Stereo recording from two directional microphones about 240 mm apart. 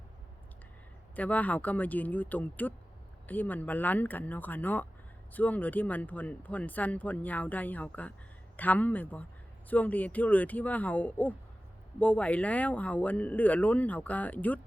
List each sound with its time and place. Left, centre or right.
1.1 s speech: centre